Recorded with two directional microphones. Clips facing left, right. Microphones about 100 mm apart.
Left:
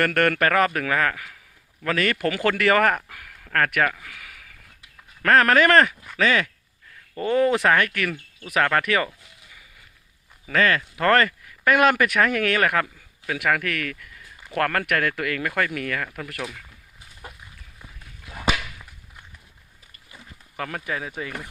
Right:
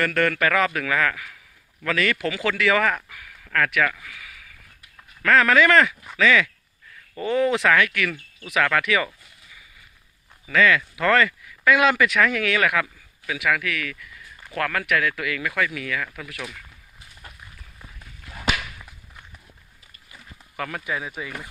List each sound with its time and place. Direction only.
0.0 s speech: 60° left (ahead or behind)
3.8 s speech: 35° left (ahead or behind)
10.4 s speech: 45° left (ahead or behind)
13.4 s speech: 55° left (ahead or behind)
20.1 s a sound: 35° left (ahead or behind)